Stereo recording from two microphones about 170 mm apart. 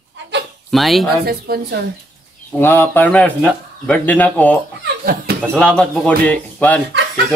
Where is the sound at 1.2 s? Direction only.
65° right (ahead or behind).